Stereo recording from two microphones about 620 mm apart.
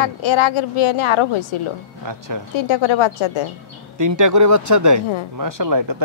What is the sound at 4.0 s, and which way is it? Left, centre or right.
Speech, right.